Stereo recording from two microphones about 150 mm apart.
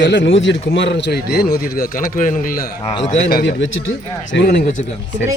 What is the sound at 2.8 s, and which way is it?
Speech, 50° left (ahead or behind).